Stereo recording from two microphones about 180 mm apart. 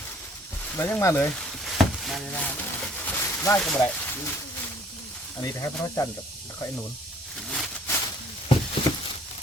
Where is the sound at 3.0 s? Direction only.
10° left (ahead or behind).